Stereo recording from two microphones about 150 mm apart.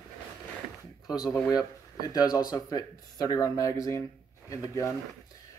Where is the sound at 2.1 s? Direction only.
25° left (ahead or behind).